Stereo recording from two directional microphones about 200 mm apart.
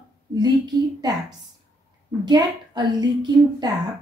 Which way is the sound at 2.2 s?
20° right (ahead or behind).